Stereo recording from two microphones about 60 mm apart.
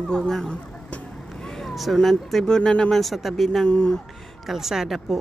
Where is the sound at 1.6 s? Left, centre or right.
Centre.